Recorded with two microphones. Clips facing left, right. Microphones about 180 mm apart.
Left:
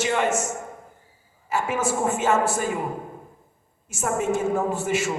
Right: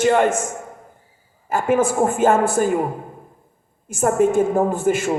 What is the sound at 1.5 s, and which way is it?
A man's voice, 55° right (ahead or behind).